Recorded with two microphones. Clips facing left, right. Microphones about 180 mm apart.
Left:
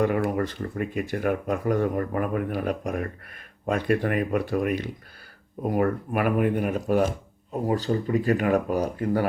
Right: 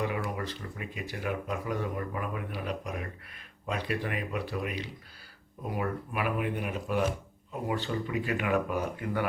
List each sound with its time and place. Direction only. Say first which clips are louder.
0.0 s speech: left 9 dB; 50° left (ahead or behind)